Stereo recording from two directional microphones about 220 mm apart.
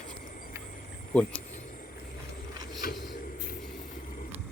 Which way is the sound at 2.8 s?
40° left (ahead or behind).